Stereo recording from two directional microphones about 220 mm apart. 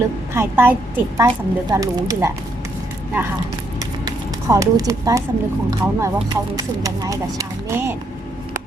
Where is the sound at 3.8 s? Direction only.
15° right (ahead or behind).